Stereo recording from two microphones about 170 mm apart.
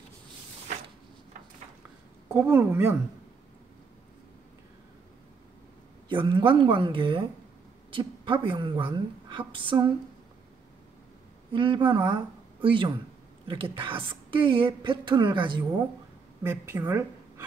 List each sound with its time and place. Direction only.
2.3 s a woman's voice: 10° right (ahead or behind)
6.0 s a woman's voice: 30° right (ahead or behind)
11.5 s a woman's voice: 30° right (ahead or behind)
16.4 s a woman's voice: 15° right (ahead or behind)